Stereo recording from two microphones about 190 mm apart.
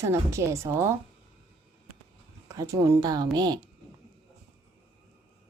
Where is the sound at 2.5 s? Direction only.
15° right (ahead or behind).